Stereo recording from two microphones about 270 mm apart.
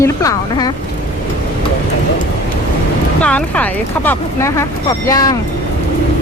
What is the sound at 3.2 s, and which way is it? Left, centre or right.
Speech, centre.